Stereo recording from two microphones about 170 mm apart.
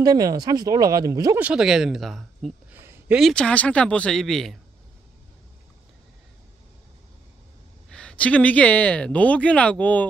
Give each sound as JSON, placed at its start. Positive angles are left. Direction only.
{"t": 0.0, "sound": "speech", "side_deg": -20}
{"t": 1.4, "sound": "speech", "side_deg": -5}
{"t": 2.7, "sound": "a sound", "side_deg": -10}
{"t": 3.2, "sound": "speech", "side_deg": 5}
{"t": 7.9, "sound": "speech", "side_deg": 5}